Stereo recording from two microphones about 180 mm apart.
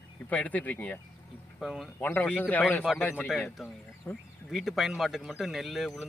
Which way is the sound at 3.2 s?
Centre (ahead or behind).